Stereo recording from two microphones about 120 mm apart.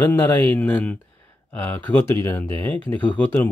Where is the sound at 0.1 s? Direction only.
15° left (ahead or behind).